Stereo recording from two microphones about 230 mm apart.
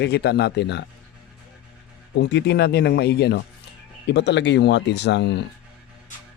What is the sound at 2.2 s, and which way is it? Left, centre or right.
Speech, left.